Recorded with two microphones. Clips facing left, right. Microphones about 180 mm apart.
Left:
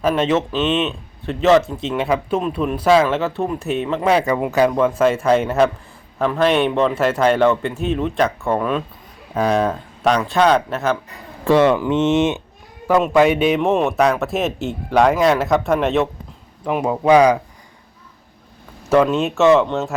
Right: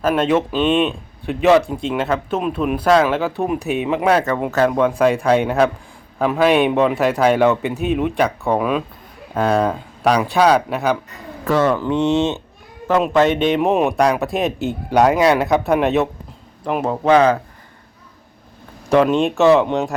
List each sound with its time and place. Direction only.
0.0 s speech: 5° right (ahead or behind)
3.4 s speech: 15° right (ahead or behind)
4.9 s speech: centre (ahead or behind)
11.1 s speech: 25° left (ahead or behind); by 13.6 s 10° left (ahead or behind)
13.6 s speech: 5° right (ahead or behind)
16.8 s speech: 10° left (ahead or behind)
18.9 s speech: centre (ahead or behind)
19.6 s speech: 15° right (ahead or behind)